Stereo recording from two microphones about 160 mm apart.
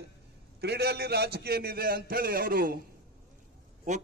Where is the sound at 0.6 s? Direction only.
90° right; by 2.8 s 65° right (ahead or behind).